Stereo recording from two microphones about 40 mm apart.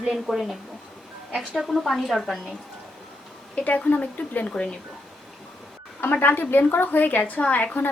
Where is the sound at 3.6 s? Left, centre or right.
Left.